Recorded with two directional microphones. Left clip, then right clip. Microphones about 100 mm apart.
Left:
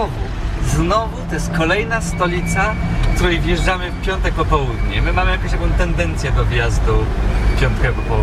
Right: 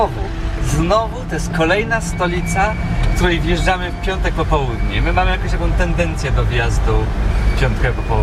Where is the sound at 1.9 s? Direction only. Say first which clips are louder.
Even; 20° left (ahead or behind).